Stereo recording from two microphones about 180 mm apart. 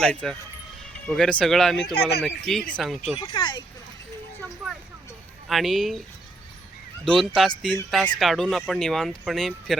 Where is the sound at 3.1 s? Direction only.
30° left (ahead or behind).